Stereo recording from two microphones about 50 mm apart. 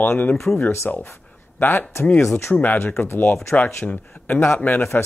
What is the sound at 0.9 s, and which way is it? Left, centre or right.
Speech, left.